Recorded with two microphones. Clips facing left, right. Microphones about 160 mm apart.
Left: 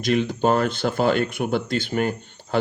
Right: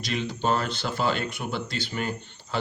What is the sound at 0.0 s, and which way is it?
Speech, 50° left (ahead or behind).